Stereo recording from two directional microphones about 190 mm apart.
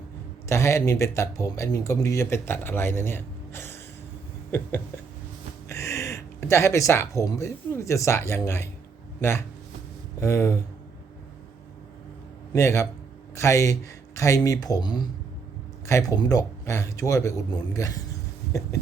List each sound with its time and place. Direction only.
0.4 s speech: 15° left (ahead or behind)
5.6 s speech: 15° left (ahead or behind)
10.2 s speech: 15° left (ahead or behind)
12.5 s speech: 15° left (ahead or behind)